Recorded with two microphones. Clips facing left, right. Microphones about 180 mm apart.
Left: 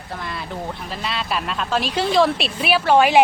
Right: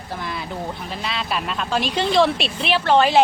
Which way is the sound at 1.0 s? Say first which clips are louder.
Left 1 dB; centre (ahead or behind).